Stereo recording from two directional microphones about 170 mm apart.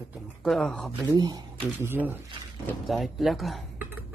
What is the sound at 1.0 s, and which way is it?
Speech, 20° right (ahead or behind).